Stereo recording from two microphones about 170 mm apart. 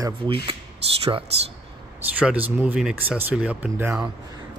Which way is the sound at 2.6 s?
5° right (ahead or behind).